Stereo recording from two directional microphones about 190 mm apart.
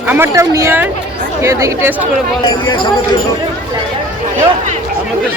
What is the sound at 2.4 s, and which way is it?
Speech, 25° left (ahead or behind).